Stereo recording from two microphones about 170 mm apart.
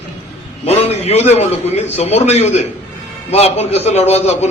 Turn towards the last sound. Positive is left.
turn(degrees=40)  # may be behind; listen again after turning